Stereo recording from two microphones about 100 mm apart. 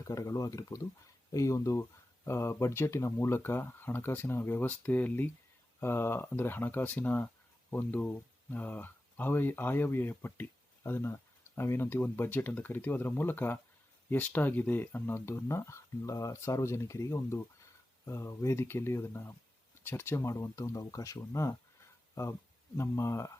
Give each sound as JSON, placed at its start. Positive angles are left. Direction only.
{"t": 0.0, "sound": "speech", "side_deg": 30}